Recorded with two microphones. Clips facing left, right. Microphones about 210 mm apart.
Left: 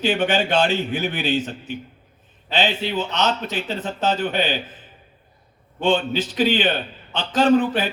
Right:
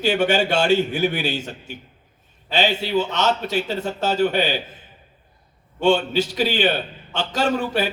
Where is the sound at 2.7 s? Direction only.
10° right (ahead or behind).